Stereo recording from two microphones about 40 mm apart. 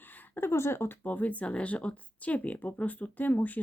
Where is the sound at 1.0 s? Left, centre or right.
Left.